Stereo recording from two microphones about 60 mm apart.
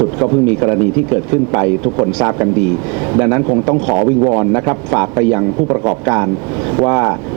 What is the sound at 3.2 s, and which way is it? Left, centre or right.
Speech, centre.